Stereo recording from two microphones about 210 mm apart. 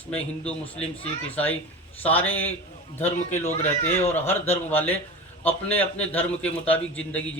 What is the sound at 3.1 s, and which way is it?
Speech, 30° left (ahead or behind).